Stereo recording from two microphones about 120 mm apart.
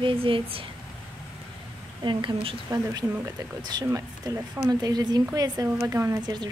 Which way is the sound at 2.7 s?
30° right (ahead or behind).